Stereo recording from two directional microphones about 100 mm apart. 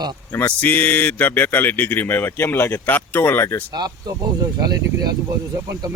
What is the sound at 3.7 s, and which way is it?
Speech, 45° right (ahead or behind).